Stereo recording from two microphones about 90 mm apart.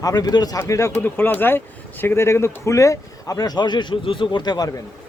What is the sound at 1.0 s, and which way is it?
A man's voice, 20° left (ahead or behind).